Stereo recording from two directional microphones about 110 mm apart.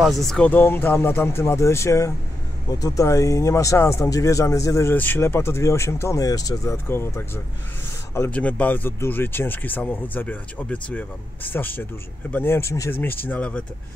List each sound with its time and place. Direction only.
0.0 s speech: centre (ahead or behind)
0.5 s speech: 20° left (ahead or behind)